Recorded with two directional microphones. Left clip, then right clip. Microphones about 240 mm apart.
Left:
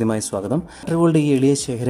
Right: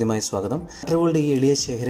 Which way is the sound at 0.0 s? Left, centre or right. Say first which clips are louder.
Left 1 dB; centre.